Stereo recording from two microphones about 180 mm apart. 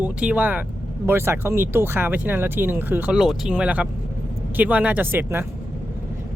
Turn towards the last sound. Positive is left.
turn(degrees=-10)  # may be behind; listen again after turning